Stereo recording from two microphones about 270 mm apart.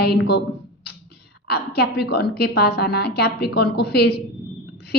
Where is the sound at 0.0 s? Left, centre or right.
Left.